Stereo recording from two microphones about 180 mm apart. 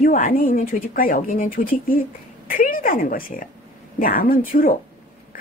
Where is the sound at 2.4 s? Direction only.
50° left (ahead or behind).